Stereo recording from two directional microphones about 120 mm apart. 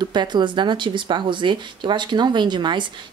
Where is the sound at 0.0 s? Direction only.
35° right (ahead or behind).